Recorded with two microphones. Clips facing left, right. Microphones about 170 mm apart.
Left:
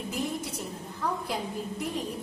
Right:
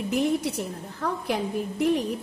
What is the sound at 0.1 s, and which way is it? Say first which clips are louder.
A woman's voice: right 10 dB; 70° right (ahead or behind).